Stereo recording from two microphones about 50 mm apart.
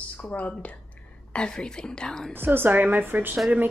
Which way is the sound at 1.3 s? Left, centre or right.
Centre.